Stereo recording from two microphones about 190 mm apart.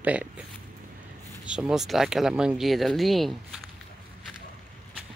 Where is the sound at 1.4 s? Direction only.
5° right (ahead or behind).